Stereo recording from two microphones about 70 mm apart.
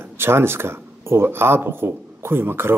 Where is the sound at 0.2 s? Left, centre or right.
Right.